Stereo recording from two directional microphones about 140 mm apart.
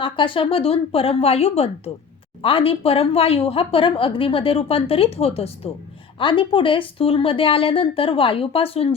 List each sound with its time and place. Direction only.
0.0 s a woman's voice: 40° left (ahead or behind)